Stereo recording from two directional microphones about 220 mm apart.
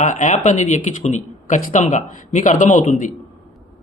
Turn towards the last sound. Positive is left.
turn(degrees=35)  # may be behind; listen again after turning